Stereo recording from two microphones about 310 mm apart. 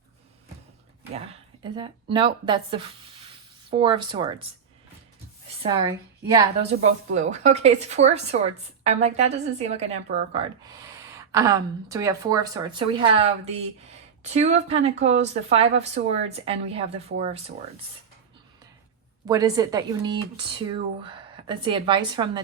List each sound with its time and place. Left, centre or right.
1.6 s speech: centre
5.6 s a woman's voice: centre
19.3 s speech: centre